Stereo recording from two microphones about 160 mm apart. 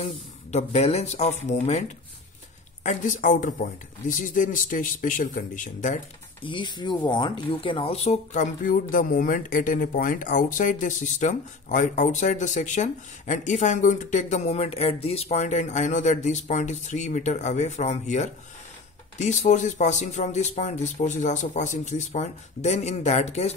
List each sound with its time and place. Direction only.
0.0 s speech: 45° left (ahead or behind)
6.4 s speech: 30° left (ahead or behind)